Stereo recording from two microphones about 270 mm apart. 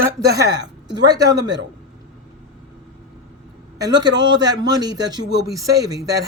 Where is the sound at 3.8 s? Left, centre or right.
Centre.